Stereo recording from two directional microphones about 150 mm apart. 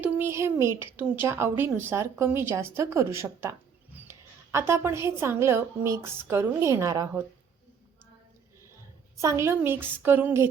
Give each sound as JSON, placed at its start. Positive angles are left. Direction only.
{"t": 0.0, "sound": "a woman's voice", "side_deg": -15}
{"t": 9.2, "sound": "a woman's voice", "side_deg": -20}